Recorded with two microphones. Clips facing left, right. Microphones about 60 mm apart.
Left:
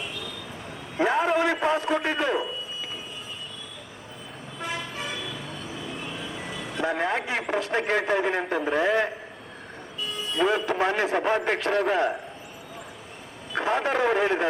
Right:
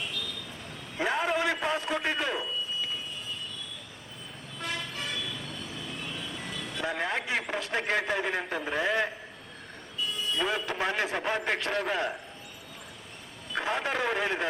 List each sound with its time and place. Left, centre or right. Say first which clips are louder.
0.9 s a sound: left 6 dB; centre
1.4 s a man's voice: left 5 dB; centre
4.6 s toot: left 3 dB; centre
7.3 s a man's voice: left 5 dB; centre
10.0 s a sound: left 1 dB; centre
10.3 s a man's voice: left 8 dB; centre
13.5 s a sound: left 5 dB; centre
13.9 s a man's voice: left 8 dB; centre
14.2 s a man's voice: left 6 dB; centre